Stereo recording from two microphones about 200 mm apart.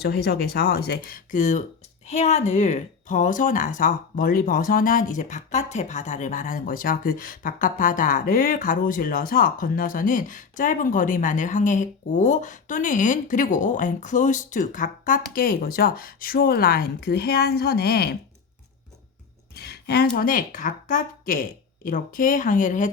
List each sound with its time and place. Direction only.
0.0 s speech: 55° left (ahead or behind)
19.5 s a sound: 50° left (ahead or behind)
20.1 s speech: 45° left (ahead or behind)